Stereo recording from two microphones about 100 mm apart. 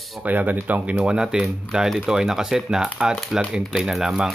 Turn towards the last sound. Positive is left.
turn(degrees=0)  # may be behind; listen again after turning